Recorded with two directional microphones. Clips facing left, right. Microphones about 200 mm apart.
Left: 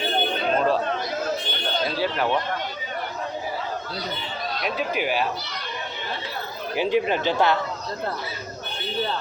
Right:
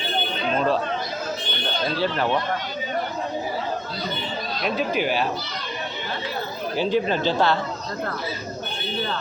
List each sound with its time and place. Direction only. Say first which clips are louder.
2.0 s speech: right 2 dB; 10° left (ahead or behind)
4.6 s speech: right 3 dB; 5° left (ahead or behind)
6.7 s speech: even; 15° left (ahead or behind)